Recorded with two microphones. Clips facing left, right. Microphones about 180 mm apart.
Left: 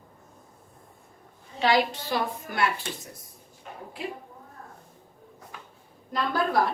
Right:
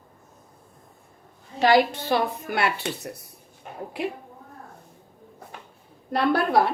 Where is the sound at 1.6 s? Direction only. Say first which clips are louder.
Right 5 dB; 55° right (ahead or behind); by 4.1 s 70° right (ahead or behind).